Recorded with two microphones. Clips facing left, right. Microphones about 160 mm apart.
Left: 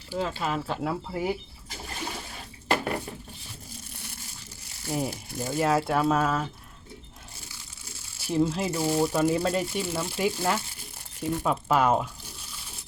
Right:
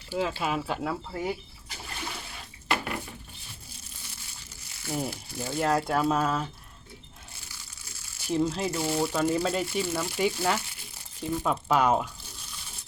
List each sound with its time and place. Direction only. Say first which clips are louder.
0.1 s speech: even; 5° right (ahead or behind); by 1.4 s 10° left (ahead or behind)
2.6 s dishes: left 4 dB; 40° left (ahead or behind)
4.9 s speech: left 2 dB; 5° left (ahead or behind)
8.2 s speech: left 1 dB; centre (ahead or behind)